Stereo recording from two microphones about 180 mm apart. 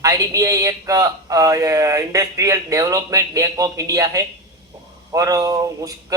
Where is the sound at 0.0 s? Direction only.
20° right (ahead or behind).